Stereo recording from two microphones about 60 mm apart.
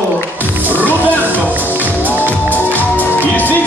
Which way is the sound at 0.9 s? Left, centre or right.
Left.